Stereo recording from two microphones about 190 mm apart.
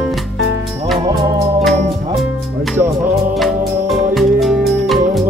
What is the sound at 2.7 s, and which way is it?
Music, 10° right (ahead or behind).